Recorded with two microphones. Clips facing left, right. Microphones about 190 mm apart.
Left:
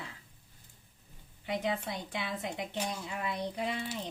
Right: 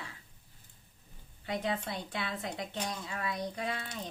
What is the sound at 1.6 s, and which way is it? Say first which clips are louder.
A woman's voice: left 1 dB; 10° left (ahead or behind).